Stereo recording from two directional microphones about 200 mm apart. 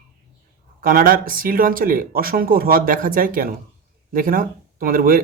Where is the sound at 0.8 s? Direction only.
45° right (ahead or behind).